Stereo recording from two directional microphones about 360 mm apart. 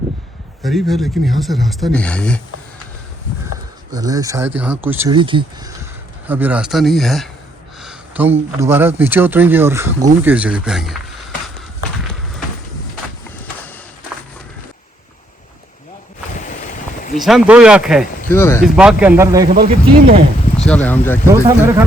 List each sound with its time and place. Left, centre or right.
0.6 s speech: centre
3.9 s speech: centre
16.3 s boat: left
17.2 s speech: centre
19.5 s speech: right
20.6 s speech: centre
21.4 s speech: centre